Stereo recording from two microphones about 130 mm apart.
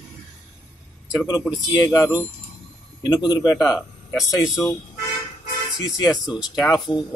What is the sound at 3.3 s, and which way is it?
Speech, 30° left (ahead or behind).